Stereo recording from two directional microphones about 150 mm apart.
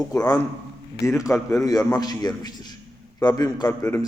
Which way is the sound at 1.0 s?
20° left (ahead or behind).